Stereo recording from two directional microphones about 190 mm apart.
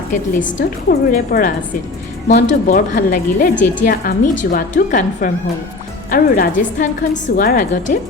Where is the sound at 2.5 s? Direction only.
45° left (ahead or behind).